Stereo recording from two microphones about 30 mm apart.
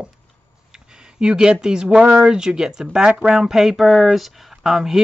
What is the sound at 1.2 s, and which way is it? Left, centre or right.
Speech, right.